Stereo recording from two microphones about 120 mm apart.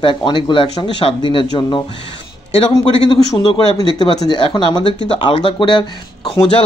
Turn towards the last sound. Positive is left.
turn(degrees=45)  # may be behind; listen again after turning